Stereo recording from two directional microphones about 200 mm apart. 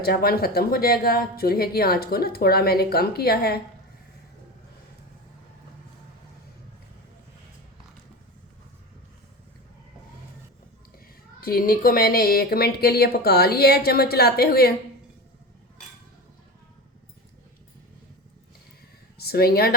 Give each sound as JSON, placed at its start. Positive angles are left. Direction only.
{"t": 0.0, "sound": "speech", "side_deg": 50}
{"t": 11.3, "sound": "speech", "side_deg": 45}
{"t": 19.1, "sound": "speech", "side_deg": 50}